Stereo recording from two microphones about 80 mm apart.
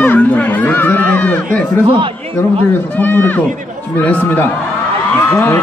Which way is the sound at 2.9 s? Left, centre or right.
Left.